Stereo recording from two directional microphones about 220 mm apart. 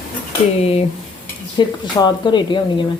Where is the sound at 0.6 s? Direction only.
25° left (ahead or behind).